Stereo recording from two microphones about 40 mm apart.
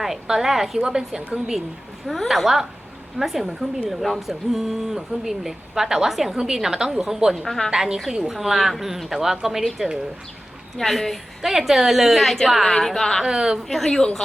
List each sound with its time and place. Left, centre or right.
0.0 s speech: centre
2.0 s a woman's voice: centre
7.4 s a woman's voice: centre
7.7 s speech: centre
8.3 s speech: centre
10.8 s a woman's voice: centre
12.2 s a woman's voice: centre
13.2 s speech: centre
13.7 s speech: centre